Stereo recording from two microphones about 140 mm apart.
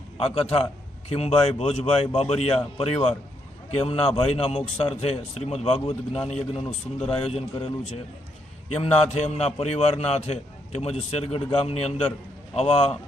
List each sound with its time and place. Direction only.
0.2 s a man's voice: 45° left (ahead or behind)